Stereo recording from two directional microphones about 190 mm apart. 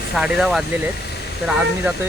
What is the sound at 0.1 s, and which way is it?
Speech, centre (ahead or behind).